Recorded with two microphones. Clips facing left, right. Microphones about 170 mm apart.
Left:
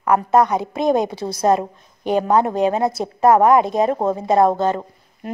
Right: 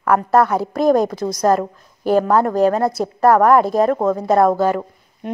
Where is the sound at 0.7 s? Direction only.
20° left (ahead or behind).